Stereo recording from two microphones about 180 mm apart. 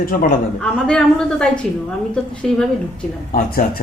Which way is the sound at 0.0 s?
50° left (ahead or behind).